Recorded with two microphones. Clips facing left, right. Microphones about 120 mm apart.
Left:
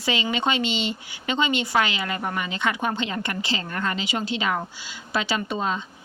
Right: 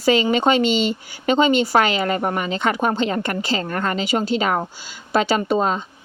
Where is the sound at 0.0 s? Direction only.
45° right (ahead or behind).